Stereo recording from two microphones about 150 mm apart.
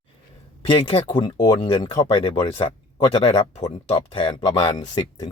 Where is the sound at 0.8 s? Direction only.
40° left (ahead or behind).